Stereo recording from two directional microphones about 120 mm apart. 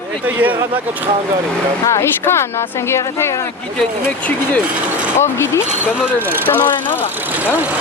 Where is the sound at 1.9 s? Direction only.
20° left (ahead or behind).